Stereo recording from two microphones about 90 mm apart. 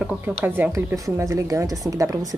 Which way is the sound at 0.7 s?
35° right (ahead or behind).